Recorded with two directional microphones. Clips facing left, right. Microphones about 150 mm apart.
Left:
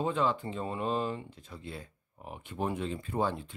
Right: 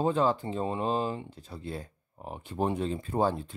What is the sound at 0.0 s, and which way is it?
Speech, 35° right (ahead or behind).